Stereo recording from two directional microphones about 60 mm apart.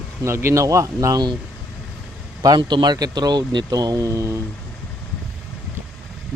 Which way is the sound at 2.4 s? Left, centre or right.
Right.